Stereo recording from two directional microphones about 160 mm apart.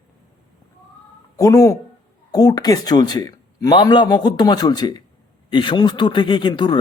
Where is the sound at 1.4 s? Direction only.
20° left (ahead or behind).